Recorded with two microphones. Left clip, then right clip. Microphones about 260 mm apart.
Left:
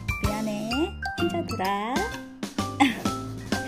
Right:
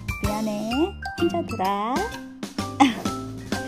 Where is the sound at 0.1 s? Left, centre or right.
Centre.